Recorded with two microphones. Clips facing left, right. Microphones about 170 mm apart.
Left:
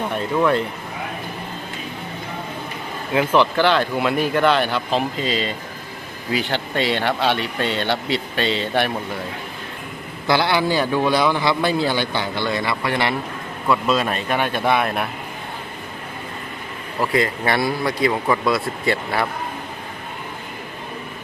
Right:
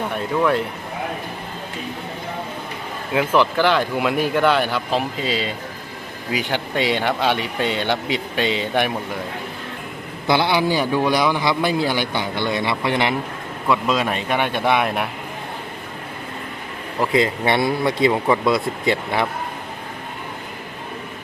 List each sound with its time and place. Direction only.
0.3 s speech: centre (ahead or behind)
3.1 s a man's voice: 5° right (ahead or behind)
10.2 s a man's voice: 15° right (ahead or behind)
17.0 s a man's voice: 20° right (ahead or behind)